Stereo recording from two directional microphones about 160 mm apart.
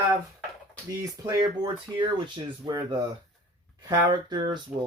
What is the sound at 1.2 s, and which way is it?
Speech, 25° right (ahead or behind).